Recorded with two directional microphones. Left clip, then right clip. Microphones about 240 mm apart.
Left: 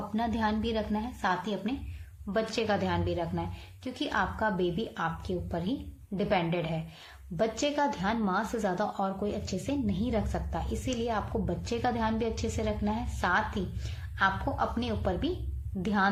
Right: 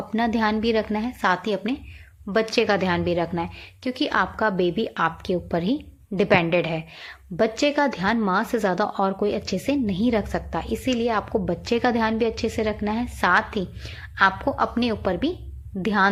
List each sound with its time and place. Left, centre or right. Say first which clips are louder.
0.2 s a woman's voice: right 8 dB; right